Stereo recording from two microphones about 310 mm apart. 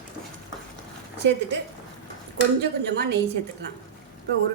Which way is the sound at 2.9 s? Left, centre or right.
Right.